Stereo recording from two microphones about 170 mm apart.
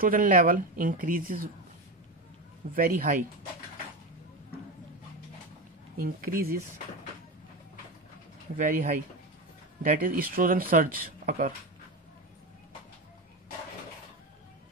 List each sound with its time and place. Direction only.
0.0 s speech: 50° right (ahead or behind)
2.7 s speech: 55° right (ahead or behind)
5.9 s speech: 55° right (ahead or behind)
8.5 s speech: 50° right (ahead or behind)